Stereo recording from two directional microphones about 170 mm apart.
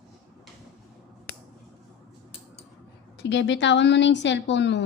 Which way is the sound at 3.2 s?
90° left.